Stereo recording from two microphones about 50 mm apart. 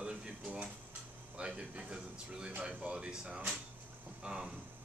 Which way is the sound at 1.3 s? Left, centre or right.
Right.